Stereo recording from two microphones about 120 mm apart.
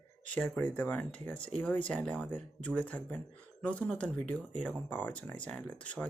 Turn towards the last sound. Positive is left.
turn(degrees=10)  # may be behind; listen again after turning